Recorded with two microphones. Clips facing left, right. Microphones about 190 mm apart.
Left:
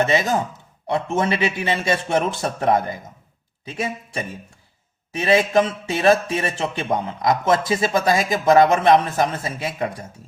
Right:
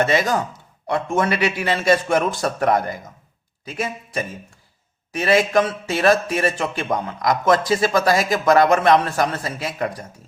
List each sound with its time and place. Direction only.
0.0 s a man's voice: 20° left (ahead or behind)